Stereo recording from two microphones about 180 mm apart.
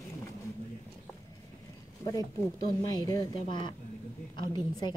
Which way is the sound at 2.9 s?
20° left (ahead or behind).